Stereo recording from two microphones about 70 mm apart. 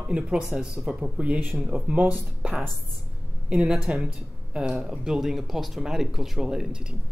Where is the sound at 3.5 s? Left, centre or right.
Centre.